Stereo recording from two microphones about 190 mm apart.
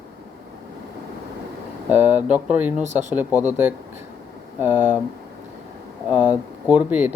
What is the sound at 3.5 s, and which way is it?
Speech, 10° right (ahead or behind).